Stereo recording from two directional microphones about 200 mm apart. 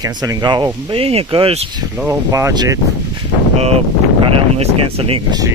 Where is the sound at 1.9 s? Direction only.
10° right (ahead or behind).